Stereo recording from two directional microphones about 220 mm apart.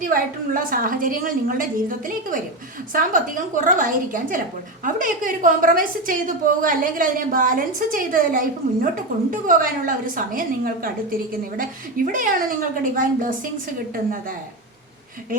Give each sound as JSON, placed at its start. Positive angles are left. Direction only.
{"t": 0.0, "sound": "a woman's voice", "side_deg": -40}